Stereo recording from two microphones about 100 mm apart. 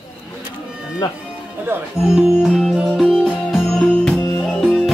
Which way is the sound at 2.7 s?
Centre (ahead or behind).